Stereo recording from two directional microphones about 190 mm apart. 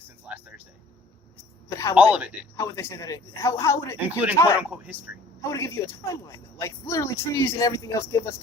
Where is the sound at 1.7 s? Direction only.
15° left (ahead or behind).